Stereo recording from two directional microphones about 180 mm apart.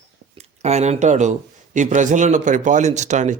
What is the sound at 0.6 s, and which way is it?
A man's voice, 40° right (ahead or behind).